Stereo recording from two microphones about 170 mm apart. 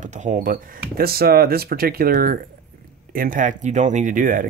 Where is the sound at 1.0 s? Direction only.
65° right (ahead or behind).